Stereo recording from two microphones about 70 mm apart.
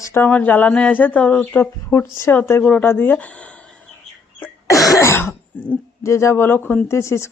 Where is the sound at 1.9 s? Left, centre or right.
Left; by 3.5 s centre.